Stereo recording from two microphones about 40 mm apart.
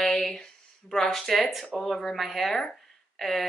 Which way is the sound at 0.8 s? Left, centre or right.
Centre.